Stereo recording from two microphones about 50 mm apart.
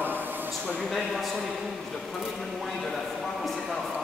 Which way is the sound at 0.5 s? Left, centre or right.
Centre.